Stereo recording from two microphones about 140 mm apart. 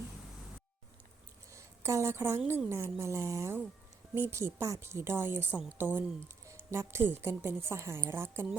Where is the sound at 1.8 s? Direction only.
20° right (ahead or behind).